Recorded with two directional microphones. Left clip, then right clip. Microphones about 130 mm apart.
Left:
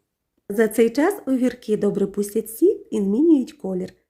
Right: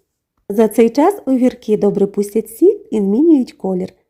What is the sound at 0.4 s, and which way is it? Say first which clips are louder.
Speech: right 6 dB; 35° right (ahead or behind).